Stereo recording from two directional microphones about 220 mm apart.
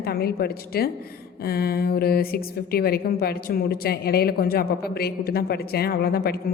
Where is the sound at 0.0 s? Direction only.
45° left (ahead or behind).